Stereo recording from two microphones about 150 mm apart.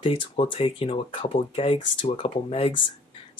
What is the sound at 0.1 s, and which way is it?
Speech, 35° left (ahead or behind).